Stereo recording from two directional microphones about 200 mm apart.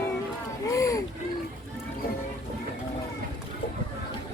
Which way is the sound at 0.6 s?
15° left (ahead or behind).